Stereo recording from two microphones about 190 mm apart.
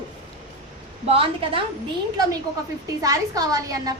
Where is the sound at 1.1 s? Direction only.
30° right (ahead or behind).